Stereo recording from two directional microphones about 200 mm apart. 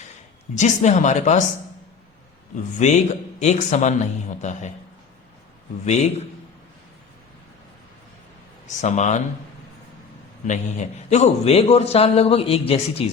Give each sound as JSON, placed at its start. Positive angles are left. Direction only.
{"t": 0.5, "sound": "a man's voice", "side_deg": 35}
{"t": 2.7, "sound": "a man's voice", "side_deg": 35}
{"t": 5.8, "sound": "a man's voice", "side_deg": 35}
{"t": 8.6, "sound": "a man's voice", "side_deg": 35}
{"t": 10.4, "sound": "a man's voice", "side_deg": 35}